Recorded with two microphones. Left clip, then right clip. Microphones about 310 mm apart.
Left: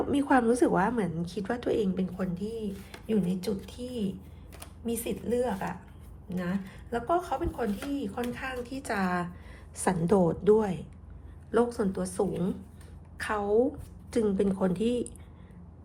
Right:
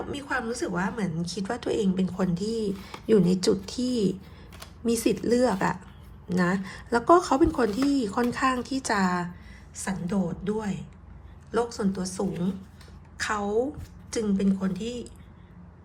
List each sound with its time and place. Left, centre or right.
0.1 s a woman's voice: centre
9.7 s a woman's voice: centre